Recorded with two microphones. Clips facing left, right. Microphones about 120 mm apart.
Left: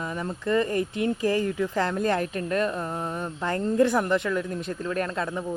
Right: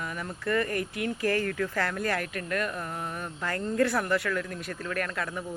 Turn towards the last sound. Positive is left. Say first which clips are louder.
# left 4 dB
turn(degrees=25)  # may be behind; listen again after turning